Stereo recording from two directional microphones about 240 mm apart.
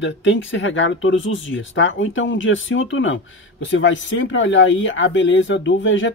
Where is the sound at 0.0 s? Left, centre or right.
Left.